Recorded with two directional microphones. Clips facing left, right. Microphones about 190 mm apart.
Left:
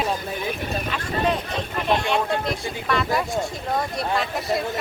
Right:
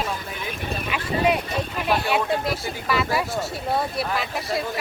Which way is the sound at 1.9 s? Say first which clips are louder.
Left 1 dB; 5° right (ahead or behind).